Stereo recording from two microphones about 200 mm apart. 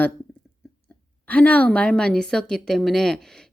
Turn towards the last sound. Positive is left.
turn(degrees=0)  # may be behind; listen again after turning